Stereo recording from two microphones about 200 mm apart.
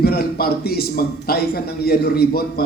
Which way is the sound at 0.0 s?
50° left (ahead or behind).